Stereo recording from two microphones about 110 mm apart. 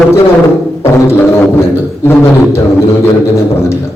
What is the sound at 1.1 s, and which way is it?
A man's voice, 25° left (ahead or behind).